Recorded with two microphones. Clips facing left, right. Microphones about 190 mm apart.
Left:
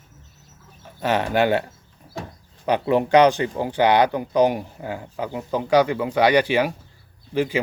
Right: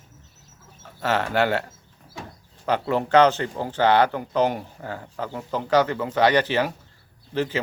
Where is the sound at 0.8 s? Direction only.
15° left (ahead or behind).